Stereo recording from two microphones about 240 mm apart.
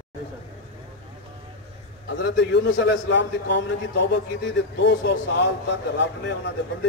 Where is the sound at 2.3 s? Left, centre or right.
Left.